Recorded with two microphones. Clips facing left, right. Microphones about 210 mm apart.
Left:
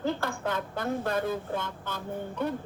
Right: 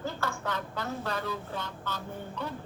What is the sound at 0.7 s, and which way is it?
Speech, 50° left (ahead or behind).